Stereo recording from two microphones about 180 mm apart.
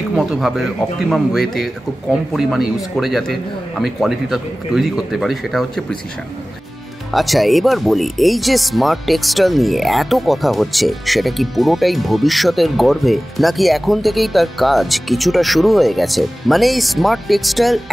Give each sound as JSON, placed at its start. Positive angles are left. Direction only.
{"t": 0.1, "sound": "speech", "side_deg": 0}
{"t": 7.1, "sound": "speech", "side_deg": 0}